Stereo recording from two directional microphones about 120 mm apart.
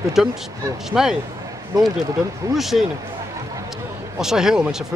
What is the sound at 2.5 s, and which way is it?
Speech, centre (ahead or behind).